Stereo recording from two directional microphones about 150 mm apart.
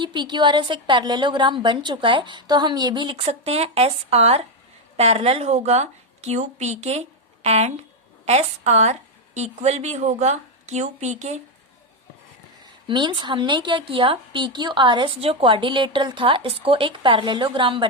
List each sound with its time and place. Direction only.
0.0 s a woman's voice: 30° right (ahead or behind); by 11.3 s 50° right (ahead or behind)
12.9 s a woman's voice: 30° right (ahead or behind)